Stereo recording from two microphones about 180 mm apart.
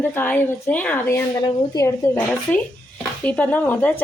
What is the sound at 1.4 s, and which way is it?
Speech, 20° left (ahead or behind).